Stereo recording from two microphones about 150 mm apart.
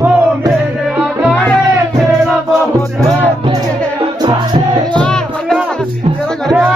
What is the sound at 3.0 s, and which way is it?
Music, 25° right (ahead or behind).